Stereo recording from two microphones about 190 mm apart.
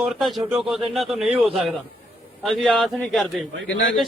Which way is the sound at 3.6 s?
75° left (ahead or behind).